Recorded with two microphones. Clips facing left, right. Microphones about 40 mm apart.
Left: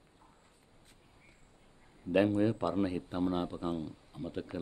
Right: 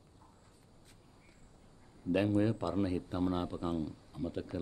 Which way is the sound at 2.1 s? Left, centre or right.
Left.